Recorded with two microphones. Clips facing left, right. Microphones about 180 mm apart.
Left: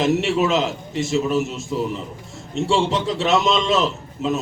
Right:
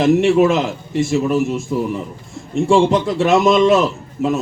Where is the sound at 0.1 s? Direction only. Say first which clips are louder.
Right 6 dB; 50° right (ahead or behind).